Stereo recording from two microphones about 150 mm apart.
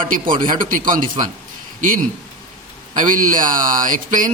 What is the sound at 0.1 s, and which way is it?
Speech, 65° right (ahead or behind).